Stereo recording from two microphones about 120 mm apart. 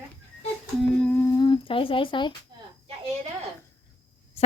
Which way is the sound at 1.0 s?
15° left (ahead or behind).